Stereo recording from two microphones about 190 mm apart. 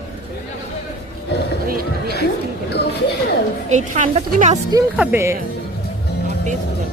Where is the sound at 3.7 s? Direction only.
35° right (ahead or behind).